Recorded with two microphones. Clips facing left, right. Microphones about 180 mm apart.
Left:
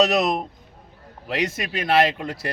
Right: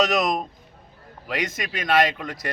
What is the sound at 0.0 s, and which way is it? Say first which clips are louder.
Speech: left 2 dB; 30° left (ahead or behind).